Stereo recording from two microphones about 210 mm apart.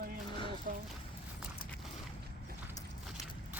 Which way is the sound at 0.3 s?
25° left (ahead or behind).